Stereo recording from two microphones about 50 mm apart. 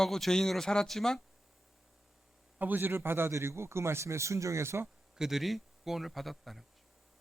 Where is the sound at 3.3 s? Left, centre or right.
Right.